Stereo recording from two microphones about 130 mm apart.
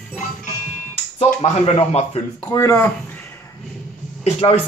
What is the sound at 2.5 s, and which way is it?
Speech, 25° left (ahead or behind).